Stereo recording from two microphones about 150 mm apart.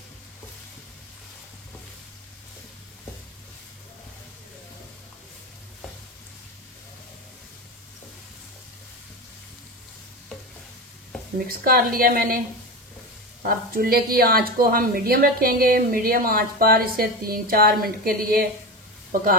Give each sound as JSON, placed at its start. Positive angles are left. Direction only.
{"t": 11.3, "sound": "speech", "side_deg": -80}
{"t": 13.5, "sound": "speech", "side_deg": -75}